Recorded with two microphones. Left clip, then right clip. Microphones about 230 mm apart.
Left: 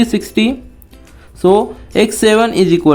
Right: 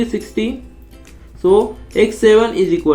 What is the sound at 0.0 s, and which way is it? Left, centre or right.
Speech, left.